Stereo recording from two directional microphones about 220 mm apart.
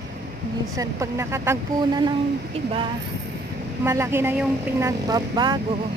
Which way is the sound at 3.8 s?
10° right (ahead or behind).